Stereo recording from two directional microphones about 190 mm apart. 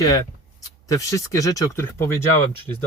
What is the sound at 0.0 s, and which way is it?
Speech, 20° left (ahead or behind).